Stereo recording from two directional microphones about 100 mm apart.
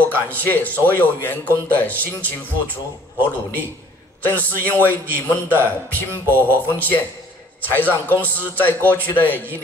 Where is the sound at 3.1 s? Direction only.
20° right (ahead or behind).